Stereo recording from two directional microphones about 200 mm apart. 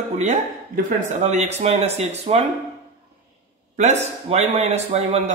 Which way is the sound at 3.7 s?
35° right (ahead or behind).